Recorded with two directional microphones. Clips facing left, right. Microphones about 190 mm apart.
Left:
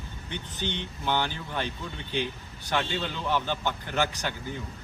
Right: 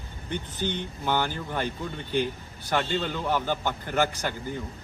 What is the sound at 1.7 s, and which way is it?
Speech, 50° right (ahead or behind).